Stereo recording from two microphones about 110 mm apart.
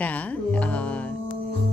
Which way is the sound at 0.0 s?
15° left (ahead or behind).